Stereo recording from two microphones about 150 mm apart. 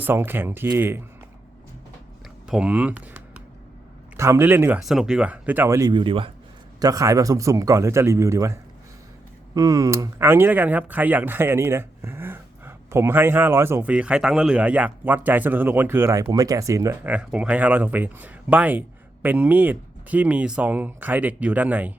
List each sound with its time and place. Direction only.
0.0 s speech: 15° right (ahead or behind)
2.5 s speech: 5° right (ahead or behind)
4.8 s speech: centre (ahead or behind); by 5.9 s 20° right (ahead or behind)
5.9 s speech: 35° right (ahead or behind)
6.7 s a man's voice: 25° right (ahead or behind)
9.6 s speech: 20° right (ahead or behind)